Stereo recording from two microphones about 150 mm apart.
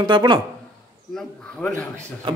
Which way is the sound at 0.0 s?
30° right (ahead or behind).